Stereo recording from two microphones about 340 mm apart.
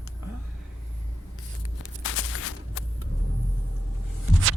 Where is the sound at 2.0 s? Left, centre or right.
Left.